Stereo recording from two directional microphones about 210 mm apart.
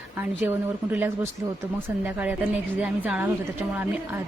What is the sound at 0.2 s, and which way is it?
A woman's voice, 10° right (ahead or behind).